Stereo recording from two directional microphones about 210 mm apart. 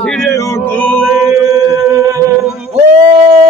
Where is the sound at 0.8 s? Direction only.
5° left (ahead or behind).